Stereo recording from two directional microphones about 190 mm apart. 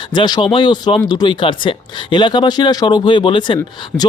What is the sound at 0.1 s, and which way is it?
Speech, 25° left (ahead or behind).